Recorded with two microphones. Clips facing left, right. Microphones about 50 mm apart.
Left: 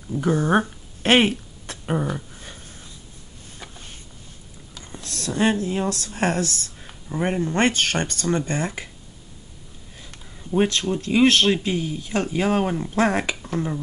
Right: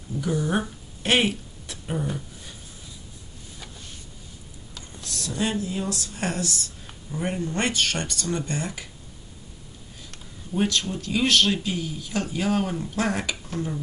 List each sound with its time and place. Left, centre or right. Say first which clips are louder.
0.2 s a sound: left 6 dB; left
4.9 s speech: left 5 dB; left
10.1 s speech: left 6 dB; left